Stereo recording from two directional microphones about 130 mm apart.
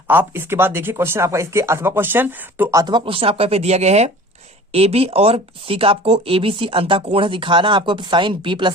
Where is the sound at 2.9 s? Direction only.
45° right (ahead or behind).